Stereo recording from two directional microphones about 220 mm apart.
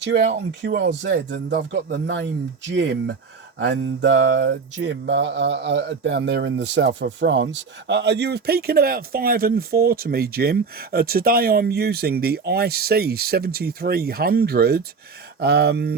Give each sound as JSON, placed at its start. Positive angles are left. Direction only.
{"t": 0.0, "sound": "mantra", "side_deg": -50}